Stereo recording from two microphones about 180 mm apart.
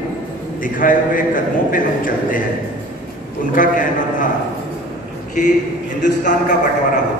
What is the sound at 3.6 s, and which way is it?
Speech, 45° left (ahead or behind).